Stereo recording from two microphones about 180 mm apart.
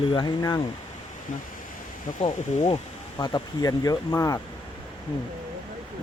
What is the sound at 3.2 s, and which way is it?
Speech, 20° left (ahead or behind).